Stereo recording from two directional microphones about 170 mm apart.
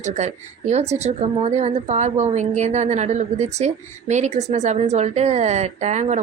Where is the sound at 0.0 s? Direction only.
45° right (ahead or behind).